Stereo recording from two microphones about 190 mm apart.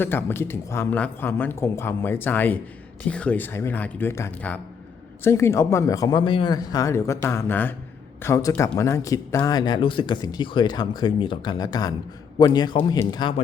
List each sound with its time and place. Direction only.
0.0 s speech: 10° left (ahead or behind)